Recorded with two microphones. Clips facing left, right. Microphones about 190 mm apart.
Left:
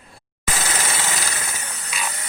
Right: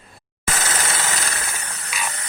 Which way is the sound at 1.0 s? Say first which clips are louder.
Right 1 dB; centre (ahead or behind).